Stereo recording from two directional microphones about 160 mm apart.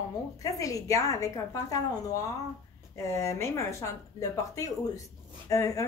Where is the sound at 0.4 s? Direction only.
20° left (ahead or behind).